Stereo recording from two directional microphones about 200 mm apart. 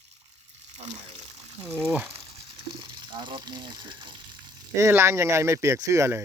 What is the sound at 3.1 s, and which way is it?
Speech, 20° right (ahead or behind).